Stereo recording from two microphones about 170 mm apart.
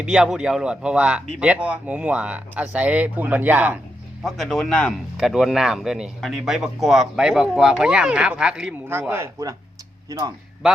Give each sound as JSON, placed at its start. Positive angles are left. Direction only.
{"t": 0.0, "sound": "speech", "side_deg": -5}
{"t": 4.2, "sound": "speech", "side_deg": 0}
{"t": 8.9, "sound": "speech", "side_deg": -15}